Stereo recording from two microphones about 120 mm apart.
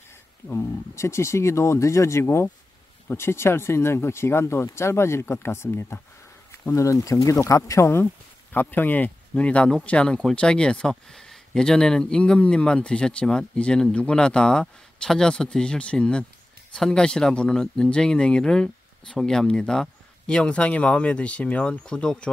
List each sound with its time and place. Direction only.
0.5 s speech: 20° left (ahead or behind)